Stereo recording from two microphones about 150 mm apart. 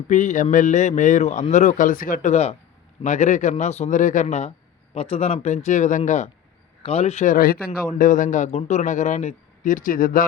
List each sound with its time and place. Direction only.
0.1 s a man's voice: 55° left (ahead or behind)
2.3 s a man's voice: 45° left (ahead or behind)
7.3 s speech: 75° left (ahead or behind)
7.9 s a man's voice: 60° left (ahead or behind)